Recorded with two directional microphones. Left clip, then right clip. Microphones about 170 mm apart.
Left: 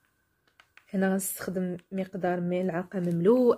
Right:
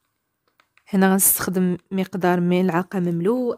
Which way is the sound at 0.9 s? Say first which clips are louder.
Right 10 dB; 60° right (ahead or behind).